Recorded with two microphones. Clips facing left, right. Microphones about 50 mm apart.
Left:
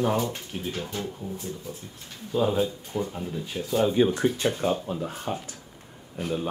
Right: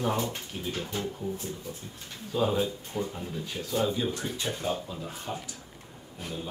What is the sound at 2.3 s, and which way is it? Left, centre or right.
Speech, centre.